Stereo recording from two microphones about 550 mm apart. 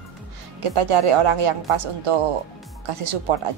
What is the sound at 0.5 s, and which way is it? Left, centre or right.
Speech, right.